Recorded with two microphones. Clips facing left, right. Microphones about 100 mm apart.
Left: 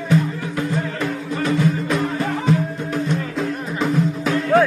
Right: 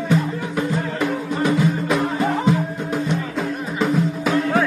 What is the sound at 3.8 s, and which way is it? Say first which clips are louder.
Music: even; 5° right (ahead or behind).